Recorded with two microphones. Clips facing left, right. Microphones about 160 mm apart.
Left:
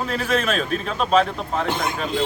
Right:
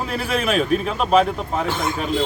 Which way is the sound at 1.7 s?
15° left (ahead or behind).